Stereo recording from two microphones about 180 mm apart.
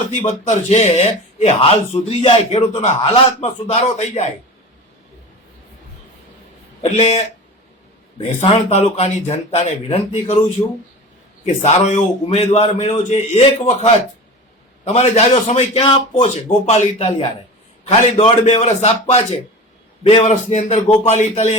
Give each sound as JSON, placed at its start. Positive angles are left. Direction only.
{"t": 0.2, "sound": "speech", "side_deg": 40}
{"t": 6.9, "sound": "speech", "side_deg": 40}
{"t": 11.4, "sound": "speech", "side_deg": 40}